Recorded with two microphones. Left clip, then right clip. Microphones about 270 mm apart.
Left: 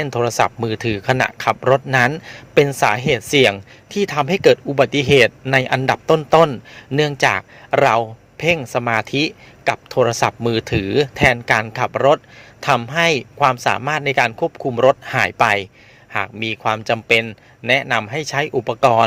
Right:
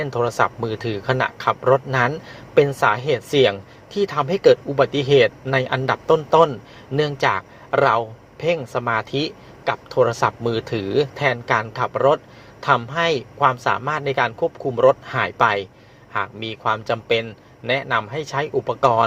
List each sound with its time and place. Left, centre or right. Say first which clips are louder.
0.0 s speech: left 2 dB; left